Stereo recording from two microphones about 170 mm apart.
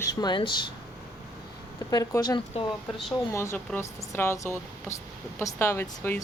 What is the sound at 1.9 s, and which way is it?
Speech, 25° left (ahead or behind).